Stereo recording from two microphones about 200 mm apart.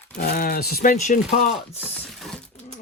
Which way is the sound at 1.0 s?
35° left (ahead or behind).